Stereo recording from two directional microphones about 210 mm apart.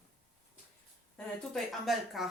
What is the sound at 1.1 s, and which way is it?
Speech, centre (ahead or behind).